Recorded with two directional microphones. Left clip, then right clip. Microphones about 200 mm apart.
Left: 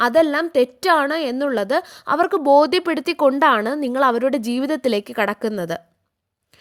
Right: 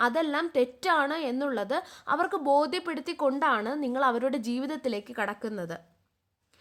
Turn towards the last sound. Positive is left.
turn(degrees=40)  # may be behind; listen again after turning